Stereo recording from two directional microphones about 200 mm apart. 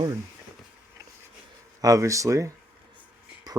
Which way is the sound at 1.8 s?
15° right (ahead or behind).